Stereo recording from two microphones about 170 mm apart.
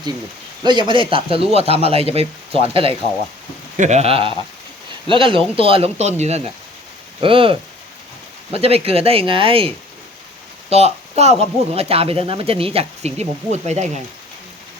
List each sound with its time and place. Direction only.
0.6 s speech: 25° right (ahead or behind); by 14.0 s 40° right (ahead or behind)